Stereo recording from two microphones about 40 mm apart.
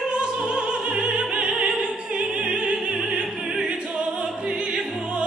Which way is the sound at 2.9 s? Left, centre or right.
Centre.